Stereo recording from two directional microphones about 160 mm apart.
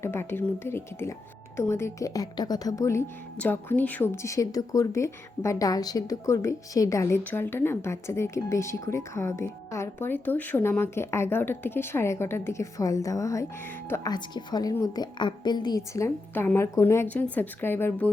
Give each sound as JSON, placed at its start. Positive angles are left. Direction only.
{"t": 0.0, "sound": "a woman's voice", "side_deg": 15}